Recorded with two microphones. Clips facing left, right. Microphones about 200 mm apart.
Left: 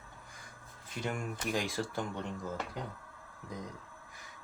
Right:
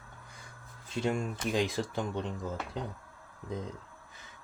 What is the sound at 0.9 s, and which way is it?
Speech, 25° right (ahead or behind).